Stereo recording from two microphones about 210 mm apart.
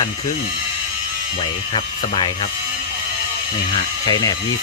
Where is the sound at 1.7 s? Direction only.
25° left (ahead or behind).